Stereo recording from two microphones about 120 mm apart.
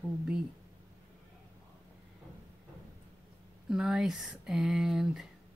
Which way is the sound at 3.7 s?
5° right (ahead or behind).